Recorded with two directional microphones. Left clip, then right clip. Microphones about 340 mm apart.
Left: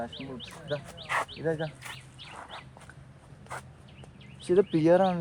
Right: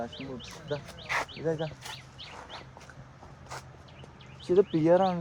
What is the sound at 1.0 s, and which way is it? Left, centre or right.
Speech, left.